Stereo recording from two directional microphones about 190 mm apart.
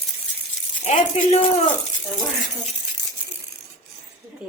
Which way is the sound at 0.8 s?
30° left (ahead or behind).